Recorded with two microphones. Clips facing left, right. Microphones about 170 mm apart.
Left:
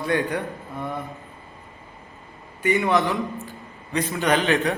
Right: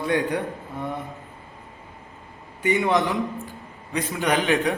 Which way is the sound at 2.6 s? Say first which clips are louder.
Even; 20° right (ahead or behind).